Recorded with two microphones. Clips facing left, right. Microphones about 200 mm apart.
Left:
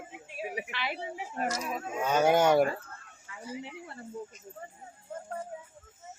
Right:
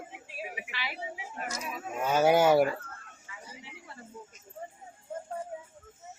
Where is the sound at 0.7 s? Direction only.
55° left (ahead or behind).